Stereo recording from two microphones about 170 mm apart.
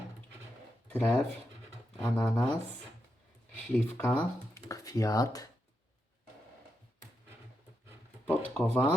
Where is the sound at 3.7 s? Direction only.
5° left (ahead or behind).